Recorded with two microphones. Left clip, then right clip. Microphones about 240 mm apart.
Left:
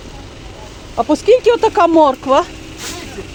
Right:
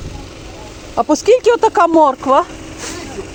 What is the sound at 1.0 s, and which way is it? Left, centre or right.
Speech, right.